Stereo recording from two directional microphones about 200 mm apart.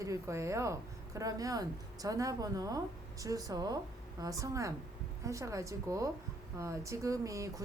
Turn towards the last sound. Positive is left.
turn(degrees=-15)  # may be behind; listen again after turning